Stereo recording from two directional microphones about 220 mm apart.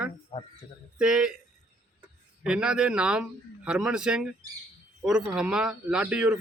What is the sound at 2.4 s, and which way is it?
A man's voice, 5° right (ahead or behind).